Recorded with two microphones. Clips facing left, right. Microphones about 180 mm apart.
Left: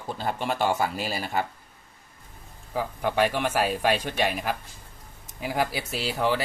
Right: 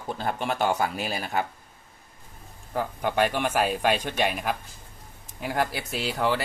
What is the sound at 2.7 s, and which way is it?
Speech, 5° left (ahead or behind).